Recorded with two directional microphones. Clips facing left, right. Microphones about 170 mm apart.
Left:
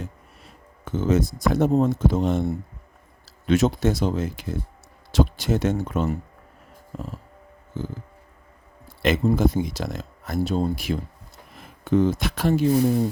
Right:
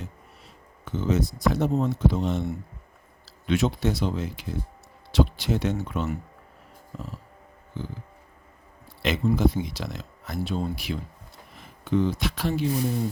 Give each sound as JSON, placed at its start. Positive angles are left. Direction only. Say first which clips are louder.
{"t": 0.9, "sound": "speech", "louder": "left 4 dB", "side_deg": 50}
{"t": 9.0, "sound": "speech", "louder": "left 3 dB", "side_deg": 50}